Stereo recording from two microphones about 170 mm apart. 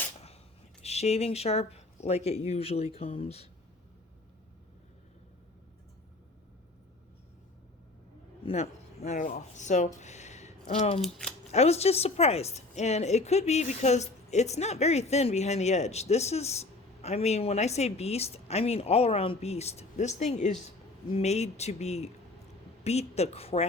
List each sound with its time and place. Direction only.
0.8 s a woman's voice: 40° left (ahead or behind)
8.4 s speech: 40° left (ahead or behind)
11.0 s speech: 5° left (ahead or behind)
11.5 s a woman's voice: 40° left (ahead or behind)